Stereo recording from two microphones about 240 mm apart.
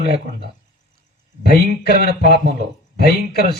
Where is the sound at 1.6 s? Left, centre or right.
Left.